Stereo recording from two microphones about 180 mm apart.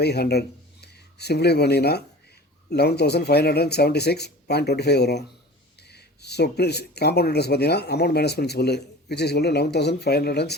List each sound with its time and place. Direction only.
0.0 s speech: 65° left (ahead or behind)